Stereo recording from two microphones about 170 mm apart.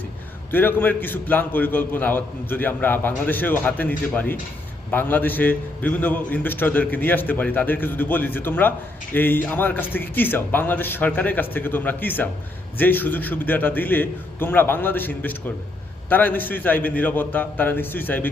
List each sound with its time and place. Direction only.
0.5 s a man's voice: 10° left (ahead or behind)